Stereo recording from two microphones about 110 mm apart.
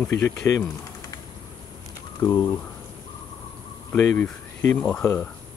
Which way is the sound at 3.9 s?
10° left (ahead or behind).